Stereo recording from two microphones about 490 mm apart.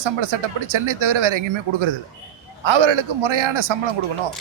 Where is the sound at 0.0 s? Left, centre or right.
Right.